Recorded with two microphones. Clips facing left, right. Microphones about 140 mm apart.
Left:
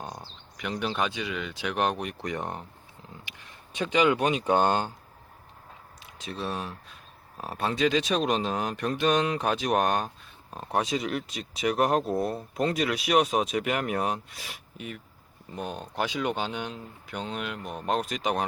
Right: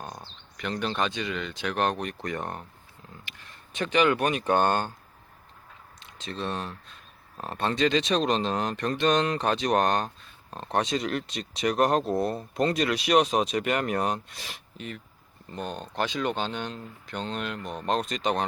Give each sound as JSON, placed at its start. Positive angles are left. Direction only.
{"t": 0.0, "sound": "speech", "side_deg": 15}
{"t": 6.0, "sound": "speech", "side_deg": 5}